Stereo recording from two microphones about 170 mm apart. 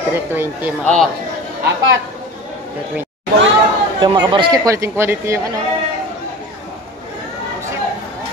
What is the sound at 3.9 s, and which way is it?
Speech, 25° right (ahead or behind).